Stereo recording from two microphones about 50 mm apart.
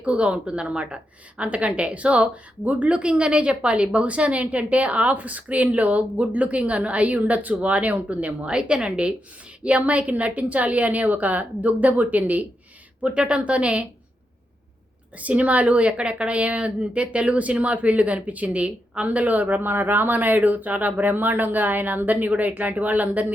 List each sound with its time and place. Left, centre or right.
0.0 s a woman's voice: right
13.0 s a woman's voice: centre
15.2 s a woman's voice: right